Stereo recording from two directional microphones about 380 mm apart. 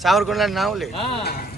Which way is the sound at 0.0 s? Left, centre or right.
Centre.